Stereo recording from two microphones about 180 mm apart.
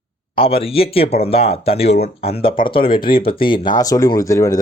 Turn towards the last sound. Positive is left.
turn(degrees=15)  # may be behind; listen again after turning